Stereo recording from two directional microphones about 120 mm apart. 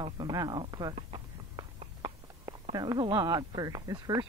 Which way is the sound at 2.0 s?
40° right (ahead or behind).